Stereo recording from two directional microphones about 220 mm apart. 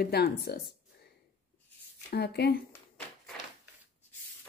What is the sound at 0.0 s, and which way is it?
Speech, 45° left (ahead or behind).